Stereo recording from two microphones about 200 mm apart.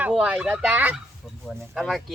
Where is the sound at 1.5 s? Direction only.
Centre (ahead or behind).